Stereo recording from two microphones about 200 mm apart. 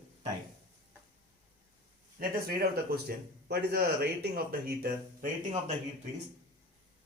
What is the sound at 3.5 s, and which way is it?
A man's voice, 50° right (ahead or behind).